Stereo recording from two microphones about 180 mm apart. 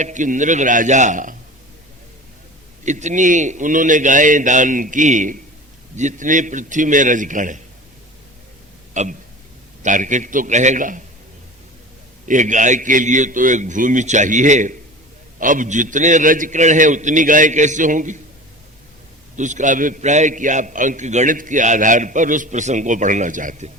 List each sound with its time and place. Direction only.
0.0 s a man's voice: 45° right (ahead or behind)
2.8 s a man's voice: 40° right (ahead or behind)
8.9 s a man's voice: 45° right (ahead or behind)
12.3 s a man's voice: 45° right (ahead or behind)
19.4 s a man's voice: 45° right (ahead or behind)